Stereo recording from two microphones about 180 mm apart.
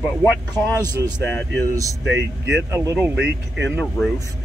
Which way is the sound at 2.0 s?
85° right.